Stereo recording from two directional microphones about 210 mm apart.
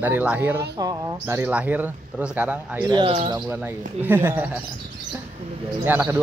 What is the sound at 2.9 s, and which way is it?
Speech, 20° right (ahead or behind).